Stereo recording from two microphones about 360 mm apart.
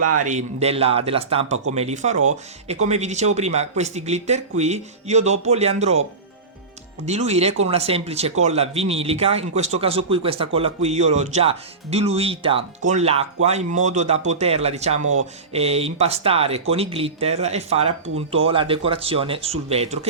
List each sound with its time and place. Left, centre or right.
0.2 s speech: centre
7.0 s speech: centre
15.0 s speech: right
15.5 s speech: centre